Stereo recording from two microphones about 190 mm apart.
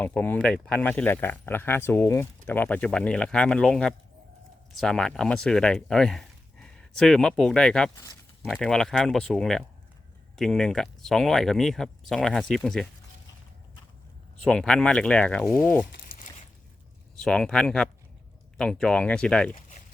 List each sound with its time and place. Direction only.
0.0 s speech: 10° left (ahead or behind)
14.4 s speech: 5° left (ahead or behind)
15.9 s a sound: 50° left (ahead or behind)
17.2 s speech: centre (ahead or behind)